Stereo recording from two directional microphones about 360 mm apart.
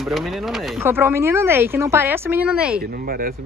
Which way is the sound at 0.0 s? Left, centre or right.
Centre.